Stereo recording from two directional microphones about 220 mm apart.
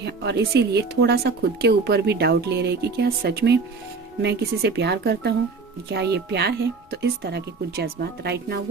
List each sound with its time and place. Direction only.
0.0 s speech: 50° right (ahead or behind)